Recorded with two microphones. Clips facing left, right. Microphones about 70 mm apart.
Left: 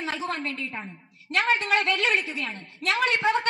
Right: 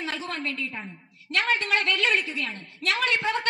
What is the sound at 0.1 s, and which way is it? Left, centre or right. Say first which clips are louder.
A woman's voice: left 2 dB; centre.